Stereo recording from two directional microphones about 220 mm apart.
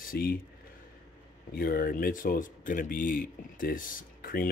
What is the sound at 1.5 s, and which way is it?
Speech, 45° left (ahead or behind).